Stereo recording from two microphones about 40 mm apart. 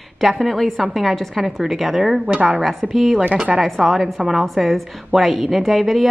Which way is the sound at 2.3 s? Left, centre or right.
Right.